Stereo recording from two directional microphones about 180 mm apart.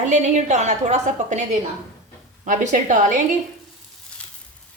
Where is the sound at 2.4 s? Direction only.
45° right (ahead or behind).